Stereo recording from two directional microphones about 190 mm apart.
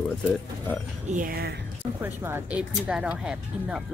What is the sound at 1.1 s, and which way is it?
Speech, 45° right (ahead or behind).